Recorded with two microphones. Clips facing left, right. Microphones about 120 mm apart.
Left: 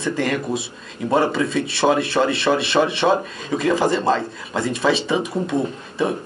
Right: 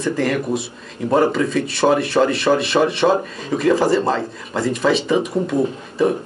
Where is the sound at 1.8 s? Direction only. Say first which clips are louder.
Right 2 dB; centre (ahead or behind).